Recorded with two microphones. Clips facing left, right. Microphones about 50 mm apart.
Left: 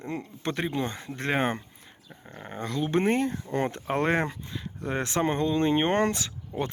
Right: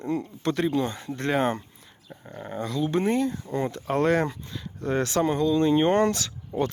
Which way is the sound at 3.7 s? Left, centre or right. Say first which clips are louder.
Right 5 dB; left.